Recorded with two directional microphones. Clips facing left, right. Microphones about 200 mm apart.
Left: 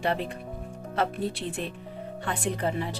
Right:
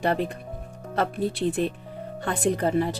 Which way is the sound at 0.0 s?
45° right (ahead or behind).